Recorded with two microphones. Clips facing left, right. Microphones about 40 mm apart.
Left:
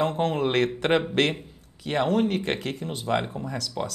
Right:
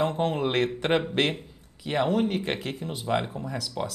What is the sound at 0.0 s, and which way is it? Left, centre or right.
Speech, centre.